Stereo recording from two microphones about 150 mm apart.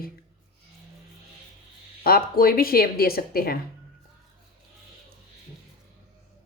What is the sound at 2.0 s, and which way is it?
Speech, 85° left.